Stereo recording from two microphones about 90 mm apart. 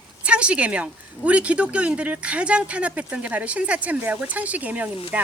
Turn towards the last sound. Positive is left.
turn(degrees=-15)  # may be behind; listen again after turning